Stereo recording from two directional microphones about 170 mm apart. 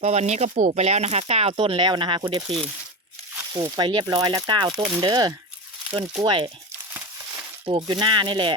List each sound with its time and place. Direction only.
0.0 s speech: 40° right (ahead or behind)
3.5 s speech: 25° right (ahead or behind)
7.6 s speech: 30° right (ahead or behind)